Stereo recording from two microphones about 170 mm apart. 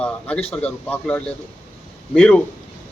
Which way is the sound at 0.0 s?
5° left (ahead or behind).